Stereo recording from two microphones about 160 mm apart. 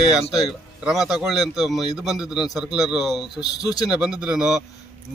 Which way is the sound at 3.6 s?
25° left (ahead or behind).